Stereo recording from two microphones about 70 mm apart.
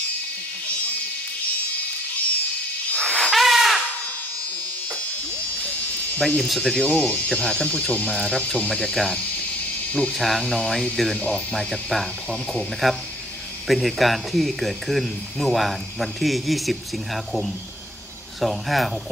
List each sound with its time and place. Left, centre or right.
2.9 s a sound: centre
5.5 s buzz: left
6.2 s speech: centre
9.2 s cricket: centre
10.1 s speech: centre